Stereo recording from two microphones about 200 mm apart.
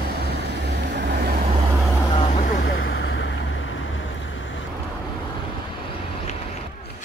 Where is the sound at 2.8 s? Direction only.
70° left (ahead or behind).